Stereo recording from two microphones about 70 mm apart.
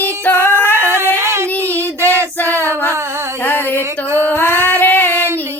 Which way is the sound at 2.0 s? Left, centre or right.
Right.